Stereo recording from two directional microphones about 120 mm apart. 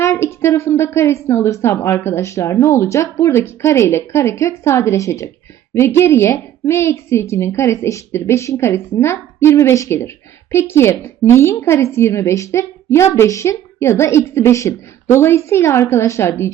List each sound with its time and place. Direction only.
0.0 s a woman's voice: 20° left (ahead or behind)